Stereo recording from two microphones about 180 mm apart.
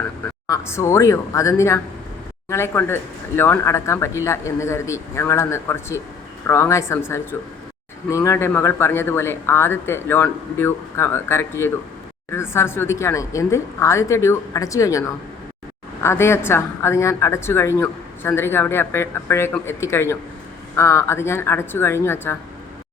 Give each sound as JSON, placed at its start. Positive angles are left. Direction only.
{"t": 0.5, "sound": "a woman's voice", "side_deg": 15}